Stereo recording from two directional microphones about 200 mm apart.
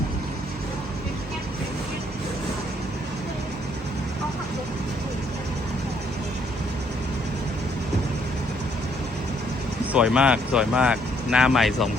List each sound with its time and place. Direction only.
9.9 s speech: 5° right (ahead or behind)